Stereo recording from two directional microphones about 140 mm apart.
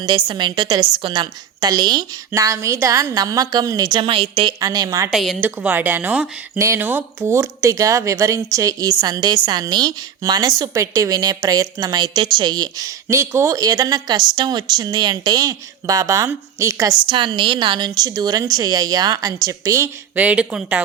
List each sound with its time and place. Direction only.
0.3 s a woman's voice: 35° right (ahead or behind)
4.6 s a woman's voice: 25° right (ahead or behind)
5.1 s a woman's voice: centre (ahead or behind)
5.4 s a woman's voice: 10° right (ahead or behind)
17.1 s a woman's voice: 35° right (ahead or behind); by 20.8 s 10° right (ahead or behind)